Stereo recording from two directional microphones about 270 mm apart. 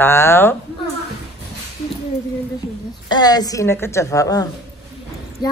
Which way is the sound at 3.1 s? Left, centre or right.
Centre.